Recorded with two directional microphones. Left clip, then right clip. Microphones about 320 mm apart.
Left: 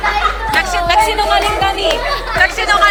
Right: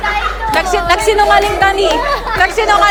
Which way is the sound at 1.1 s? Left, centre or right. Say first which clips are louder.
Right 3 dB; right.